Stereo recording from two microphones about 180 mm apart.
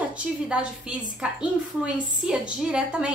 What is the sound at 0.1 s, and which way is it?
A woman's voice, 5° right (ahead or behind).